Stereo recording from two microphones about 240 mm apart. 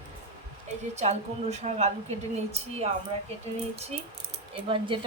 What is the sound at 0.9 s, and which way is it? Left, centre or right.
Speech, right.